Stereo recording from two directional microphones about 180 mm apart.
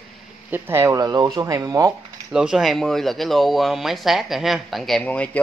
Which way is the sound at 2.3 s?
5° right (ahead or behind).